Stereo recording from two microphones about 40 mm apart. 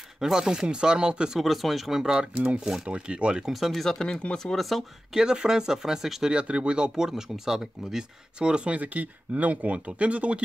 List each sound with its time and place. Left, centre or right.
0.2 s speech: centre
1.4 s speech: centre
2.1 s speech: right
3.5 s speech: centre
4.0 s speech: left
4.6 s speech: centre
5.1 s speech: centre
6.3 s speech: right
7.1 s speech: centre
8.4 s speech: right
8.7 s speech: right